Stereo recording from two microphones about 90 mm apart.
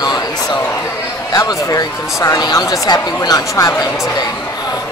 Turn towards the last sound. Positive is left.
turn(degrees=45)  # may be behind; listen again after turning